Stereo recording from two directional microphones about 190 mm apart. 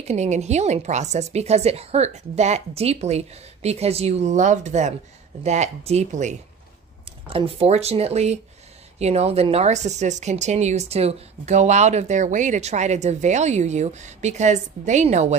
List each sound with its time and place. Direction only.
0.1 s speech: 35° right (ahead or behind)